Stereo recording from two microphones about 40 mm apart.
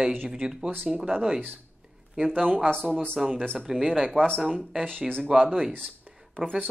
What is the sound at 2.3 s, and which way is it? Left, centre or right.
Speech, right.